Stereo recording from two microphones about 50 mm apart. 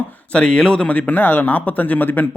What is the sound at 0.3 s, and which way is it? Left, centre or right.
Speech, centre.